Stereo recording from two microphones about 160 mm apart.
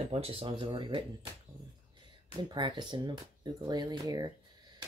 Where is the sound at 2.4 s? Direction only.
30° right (ahead or behind).